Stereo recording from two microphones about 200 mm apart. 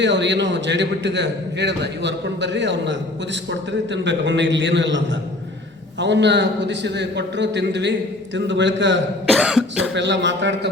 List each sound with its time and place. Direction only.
0.0 s a man's voice: 60° right (ahead or behind)
9.3 s cough: centre (ahead or behind)
9.9 s a man's voice: 60° right (ahead or behind)